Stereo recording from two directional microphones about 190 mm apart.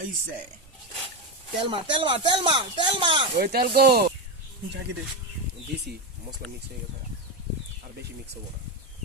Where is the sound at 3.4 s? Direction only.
55° right (ahead or behind).